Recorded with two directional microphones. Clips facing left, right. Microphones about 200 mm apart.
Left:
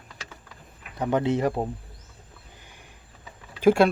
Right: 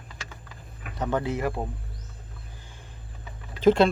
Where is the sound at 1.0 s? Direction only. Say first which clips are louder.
Left 4 dB; 20° left (ahead or behind).